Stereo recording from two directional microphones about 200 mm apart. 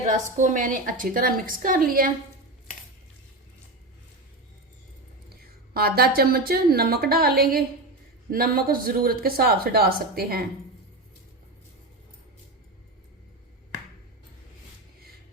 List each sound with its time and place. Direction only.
0.3 s speech: 40° right (ahead or behind)
5.7 s speech: 50° right (ahead or behind)